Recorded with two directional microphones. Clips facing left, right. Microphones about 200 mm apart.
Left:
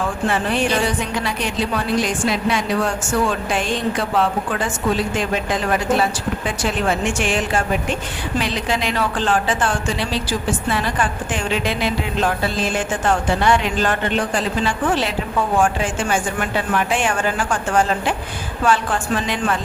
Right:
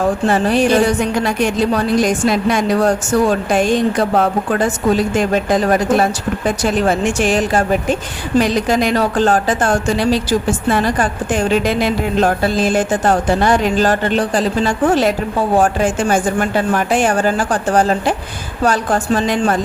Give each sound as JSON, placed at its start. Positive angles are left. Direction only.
{"t": 0.0, "sound": "speech", "side_deg": -40}